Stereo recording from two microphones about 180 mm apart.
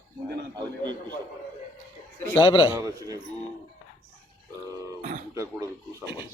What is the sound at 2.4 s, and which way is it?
Speech, 25° left (ahead or behind).